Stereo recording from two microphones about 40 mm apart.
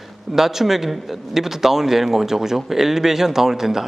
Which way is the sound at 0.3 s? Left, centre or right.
Centre.